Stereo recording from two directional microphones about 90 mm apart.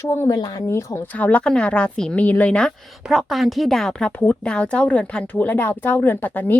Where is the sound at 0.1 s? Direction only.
35° left (ahead or behind).